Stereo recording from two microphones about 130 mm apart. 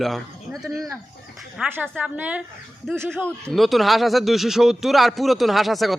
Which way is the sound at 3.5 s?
Centre (ahead or behind).